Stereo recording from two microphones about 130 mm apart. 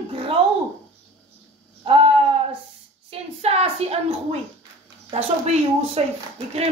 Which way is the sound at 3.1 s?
50° right (ahead or behind).